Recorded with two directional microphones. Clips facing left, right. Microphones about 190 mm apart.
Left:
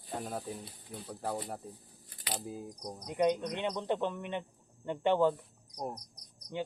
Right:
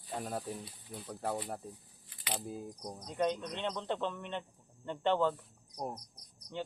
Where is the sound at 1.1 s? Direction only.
Centre (ahead or behind).